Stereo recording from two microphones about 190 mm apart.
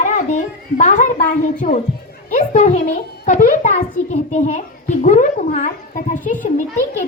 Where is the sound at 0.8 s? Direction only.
40° left (ahead or behind).